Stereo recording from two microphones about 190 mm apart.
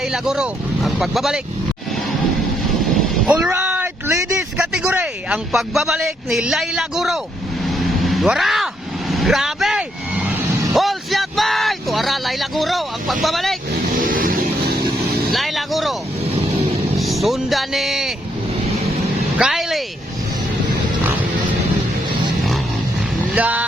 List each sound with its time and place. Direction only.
0.0 s speech: 5° right (ahead or behind)
3.4 s a sound: 5° right (ahead or behind)
7.7 s vehicle: centre (ahead or behind)
13.2 s speech: centre (ahead or behind)
14.0 s vehicle: 45° right (ahead or behind)
15.3 s speech: centre (ahead or behind)
17.0 s speech: centre (ahead or behind)
19.4 s speech: centre (ahead or behind)
23.3 s music: 5° right (ahead or behind)